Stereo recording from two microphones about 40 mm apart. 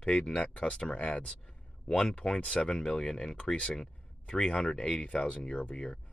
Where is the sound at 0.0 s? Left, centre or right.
Left.